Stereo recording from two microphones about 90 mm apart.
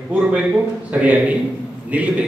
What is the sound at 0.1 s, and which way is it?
A man's voice, 15° right (ahead or behind).